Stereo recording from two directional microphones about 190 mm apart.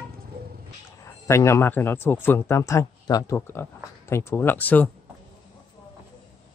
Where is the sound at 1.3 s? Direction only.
15° left (ahead or behind).